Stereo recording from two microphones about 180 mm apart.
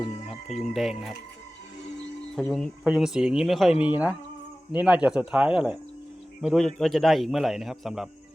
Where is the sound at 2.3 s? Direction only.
Centre (ahead or behind).